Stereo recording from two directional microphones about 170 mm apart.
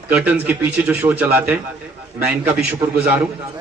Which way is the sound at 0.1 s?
10° right (ahead or behind).